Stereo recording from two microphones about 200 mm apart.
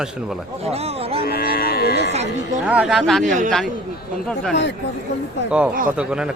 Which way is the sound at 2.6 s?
5° right (ahead or behind).